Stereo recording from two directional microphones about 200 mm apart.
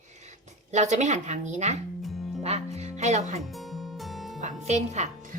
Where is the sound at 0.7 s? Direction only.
35° right (ahead or behind).